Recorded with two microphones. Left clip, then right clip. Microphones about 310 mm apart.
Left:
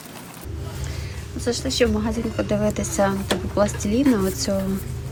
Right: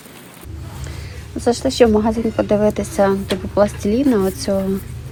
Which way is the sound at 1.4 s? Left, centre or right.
Centre.